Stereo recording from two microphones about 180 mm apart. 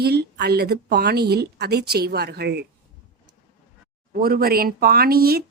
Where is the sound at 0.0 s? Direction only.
65° right (ahead or behind).